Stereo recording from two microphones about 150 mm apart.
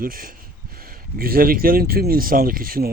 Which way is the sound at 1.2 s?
85° right.